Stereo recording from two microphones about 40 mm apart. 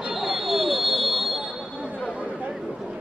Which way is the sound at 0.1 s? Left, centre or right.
Centre.